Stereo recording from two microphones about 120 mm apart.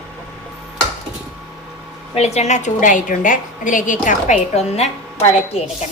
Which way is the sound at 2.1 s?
65° left (ahead or behind).